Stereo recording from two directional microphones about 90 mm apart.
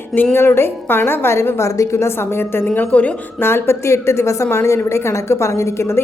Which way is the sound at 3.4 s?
25° left (ahead or behind).